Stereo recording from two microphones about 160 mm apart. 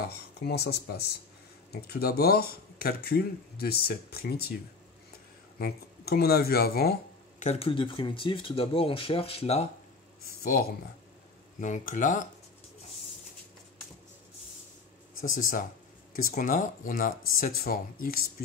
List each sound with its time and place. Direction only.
0.1 s speech: 90° left
5.6 s speech: 75° left (ahead or behind)
7.3 s speech: 40° left (ahead or behind)
10.4 s speech: 70° left (ahead or behind)
11.6 s speech: 50° left (ahead or behind)
15.2 s speech: 60° left (ahead or behind)